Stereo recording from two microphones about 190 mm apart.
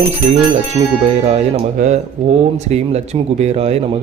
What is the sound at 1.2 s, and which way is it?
Speech, 35° right (ahead or behind).